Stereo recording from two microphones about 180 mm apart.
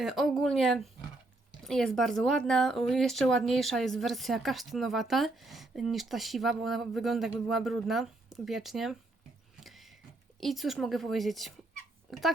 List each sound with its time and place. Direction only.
0.0 s speech: centre (ahead or behind)
9.6 s a sound: centre (ahead or behind)
10.4 s speech: centre (ahead or behind)